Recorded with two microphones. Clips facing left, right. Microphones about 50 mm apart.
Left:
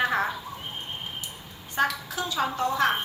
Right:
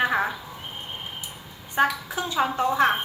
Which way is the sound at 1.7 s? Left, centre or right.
Centre.